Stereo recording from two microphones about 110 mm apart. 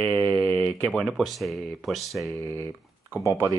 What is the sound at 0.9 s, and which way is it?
Speech, centre (ahead or behind).